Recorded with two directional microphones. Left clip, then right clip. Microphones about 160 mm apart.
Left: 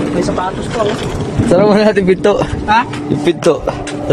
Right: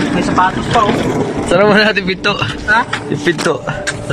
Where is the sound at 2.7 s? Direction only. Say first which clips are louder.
Left 1 dB; 20° left (ahead or behind).